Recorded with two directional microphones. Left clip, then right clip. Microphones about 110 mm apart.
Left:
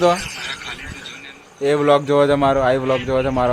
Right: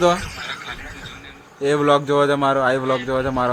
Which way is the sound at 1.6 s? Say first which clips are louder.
Left 2 dB; centre (ahead or behind).